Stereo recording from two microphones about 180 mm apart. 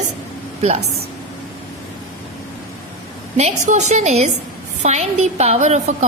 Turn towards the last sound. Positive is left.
turn(degrees=-40)  # may be behind; listen again after turning